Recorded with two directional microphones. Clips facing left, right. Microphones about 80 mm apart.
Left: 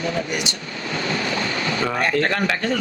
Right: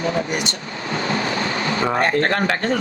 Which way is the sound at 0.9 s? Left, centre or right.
Right.